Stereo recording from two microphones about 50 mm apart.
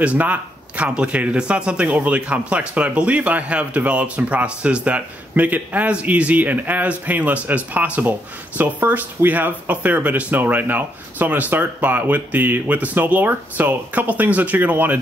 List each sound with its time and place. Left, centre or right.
0.0 s speech: right